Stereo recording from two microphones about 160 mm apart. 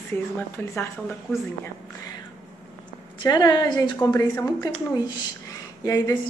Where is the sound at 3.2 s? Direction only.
25° left (ahead or behind).